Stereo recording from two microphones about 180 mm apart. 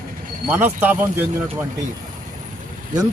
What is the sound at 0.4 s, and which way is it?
Speech, 10° right (ahead or behind).